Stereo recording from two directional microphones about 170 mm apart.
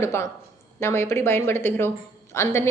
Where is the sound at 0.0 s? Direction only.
15° left (ahead or behind).